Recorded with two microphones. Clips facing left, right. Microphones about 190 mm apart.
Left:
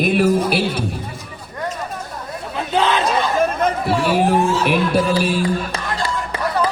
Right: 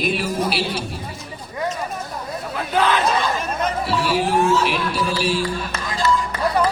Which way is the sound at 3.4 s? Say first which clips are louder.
Left 5 dB; 50° left (ahead or behind).